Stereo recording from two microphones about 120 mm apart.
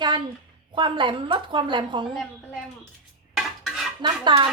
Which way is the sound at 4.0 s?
40° right (ahead or behind).